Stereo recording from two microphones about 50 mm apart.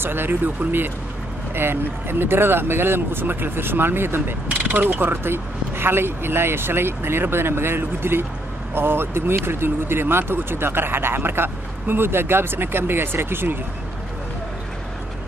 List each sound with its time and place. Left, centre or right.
0.0 s speech: right
4.5 s speech: right